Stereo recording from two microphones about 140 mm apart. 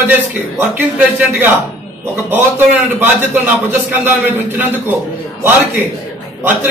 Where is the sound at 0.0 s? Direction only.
10° right (ahead or behind).